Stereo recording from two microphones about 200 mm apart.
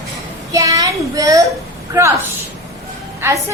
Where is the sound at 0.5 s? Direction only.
15° right (ahead or behind).